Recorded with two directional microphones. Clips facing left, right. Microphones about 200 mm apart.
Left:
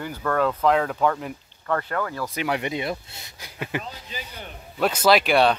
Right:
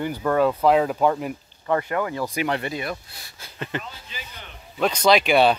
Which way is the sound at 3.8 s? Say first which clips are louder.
Left 3 dB; 40° left (ahead or behind).